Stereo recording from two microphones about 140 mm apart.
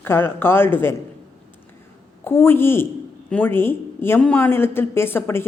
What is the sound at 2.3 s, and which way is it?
A woman's voice, 15° left (ahead or behind).